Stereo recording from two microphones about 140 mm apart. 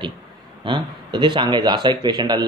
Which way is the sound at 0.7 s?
35° right (ahead or behind).